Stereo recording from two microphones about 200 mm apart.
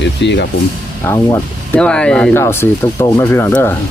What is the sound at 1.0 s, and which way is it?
Speech, 10° left (ahead or behind).